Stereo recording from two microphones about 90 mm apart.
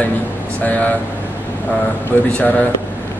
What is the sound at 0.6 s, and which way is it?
Speech, 20° left (ahead or behind).